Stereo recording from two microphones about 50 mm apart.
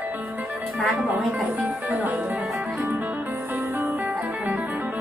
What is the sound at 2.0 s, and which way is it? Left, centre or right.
Music, right.